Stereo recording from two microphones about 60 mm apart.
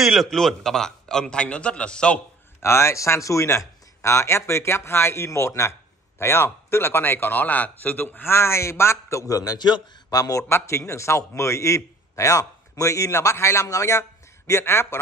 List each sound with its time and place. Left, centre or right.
0.0 s a man's voice: centre
2.6 s speech: left
3.4 s speech: left
9.2 s a man's voice: left
10.1 s a man's voice: left
10.5 s a man's voice: left